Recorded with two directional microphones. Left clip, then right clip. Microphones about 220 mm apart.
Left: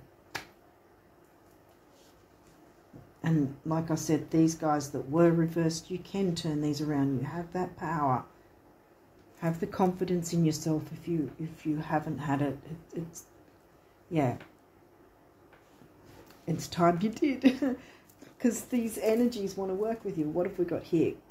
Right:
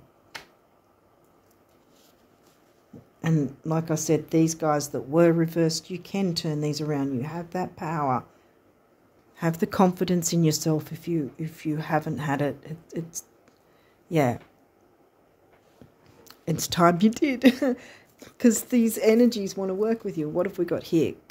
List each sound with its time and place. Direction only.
3.2 s speech: 50° right (ahead or behind)
9.4 s speech: 50° right (ahead or behind)
16.4 s speech: 50° right (ahead or behind)